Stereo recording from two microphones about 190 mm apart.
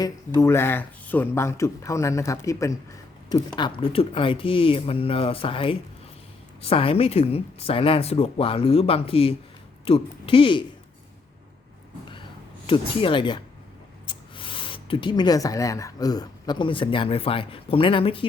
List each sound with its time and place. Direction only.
0.0 s speech: 15° left (ahead or behind)
12.6 s speech: 25° left (ahead or behind)